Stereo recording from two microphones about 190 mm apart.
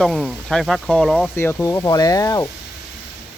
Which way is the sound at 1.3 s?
10° left (ahead or behind).